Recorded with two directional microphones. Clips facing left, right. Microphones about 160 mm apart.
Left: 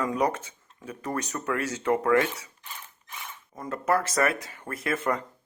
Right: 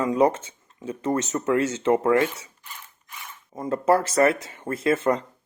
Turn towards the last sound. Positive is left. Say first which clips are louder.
# right 6 dB
turn(degrees=-25)  # may be behind; listen again after turning